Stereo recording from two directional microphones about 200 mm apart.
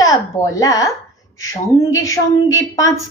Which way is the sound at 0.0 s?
15° left (ahead or behind).